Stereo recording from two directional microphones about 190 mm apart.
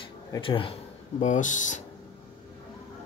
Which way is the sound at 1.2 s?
40° left (ahead or behind).